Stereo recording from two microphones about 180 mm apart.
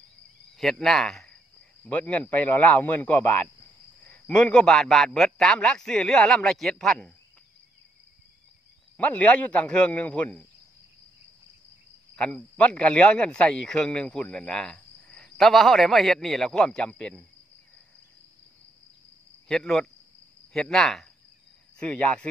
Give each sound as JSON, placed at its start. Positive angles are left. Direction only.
{"t": 0.6, "sound": "speech", "side_deg": 0}
{"t": 8.9, "sound": "speech", "side_deg": 10}
{"t": 12.2, "sound": "speech", "side_deg": 5}
{"t": 19.4, "sound": "speech", "side_deg": 5}